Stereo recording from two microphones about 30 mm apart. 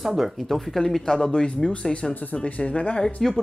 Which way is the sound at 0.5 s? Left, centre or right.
Centre.